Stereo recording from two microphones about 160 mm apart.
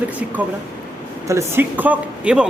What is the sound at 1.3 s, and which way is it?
A man's voice, 15° right (ahead or behind).